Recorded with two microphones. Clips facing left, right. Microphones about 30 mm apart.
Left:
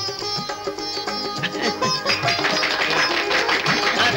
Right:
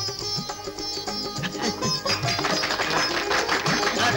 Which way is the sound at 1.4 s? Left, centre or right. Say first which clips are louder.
Left 5 dB; left.